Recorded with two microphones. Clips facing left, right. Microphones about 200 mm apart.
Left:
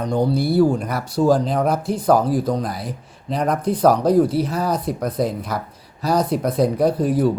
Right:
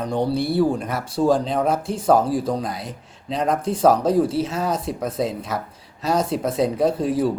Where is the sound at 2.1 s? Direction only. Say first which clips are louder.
Left 1 dB; 30° right (ahead or behind).